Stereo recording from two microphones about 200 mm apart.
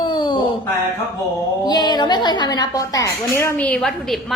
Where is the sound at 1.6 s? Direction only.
20° left (ahead or behind); by 4.3 s centre (ahead or behind).